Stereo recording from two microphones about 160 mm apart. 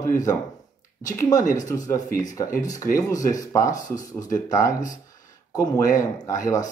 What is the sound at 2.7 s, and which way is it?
Speech, 20° left (ahead or behind).